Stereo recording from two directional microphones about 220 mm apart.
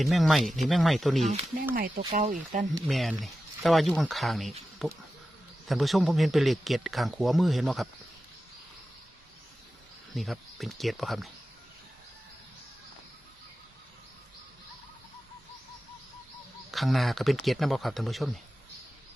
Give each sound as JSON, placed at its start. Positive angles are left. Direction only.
{"t": 0.0, "sound": "speech", "side_deg": 0}
{"t": 1.2, "sound": "speech", "side_deg": -30}
{"t": 2.8, "sound": "speech", "side_deg": 0}
{"t": 10.2, "sound": "speech", "side_deg": 0}
{"t": 16.7, "sound": "speech", "side_deg": 0}